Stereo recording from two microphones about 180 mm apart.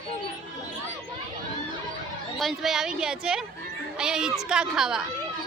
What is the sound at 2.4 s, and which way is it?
Speech, centre (ahead or behind).